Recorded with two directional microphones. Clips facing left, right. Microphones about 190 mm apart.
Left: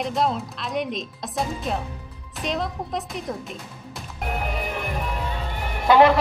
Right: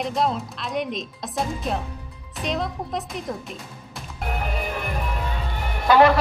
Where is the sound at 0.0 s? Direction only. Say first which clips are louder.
Even; centre (ahead or behind).